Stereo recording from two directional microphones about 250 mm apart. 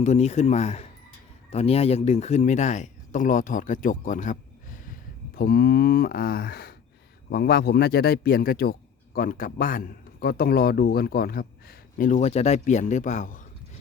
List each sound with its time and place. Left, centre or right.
0.0 s a man's voice: left